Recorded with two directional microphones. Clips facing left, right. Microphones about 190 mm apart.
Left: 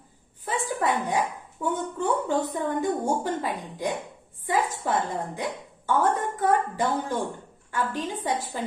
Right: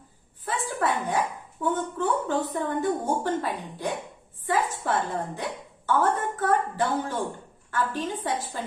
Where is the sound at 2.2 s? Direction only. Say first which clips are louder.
Left 1 dB; 15° left (ahead or behind).